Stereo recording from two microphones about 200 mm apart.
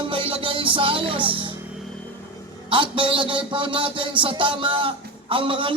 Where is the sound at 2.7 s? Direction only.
25° right (ahead or behind).